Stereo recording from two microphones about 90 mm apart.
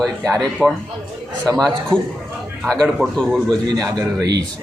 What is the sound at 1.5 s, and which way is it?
Speech, 5° left (ahead or behind).